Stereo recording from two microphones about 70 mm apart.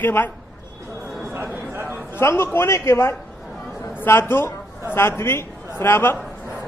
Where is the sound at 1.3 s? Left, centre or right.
Right.